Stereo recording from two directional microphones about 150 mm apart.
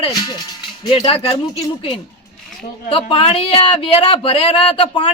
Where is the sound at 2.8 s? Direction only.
40° left (ahead or behind).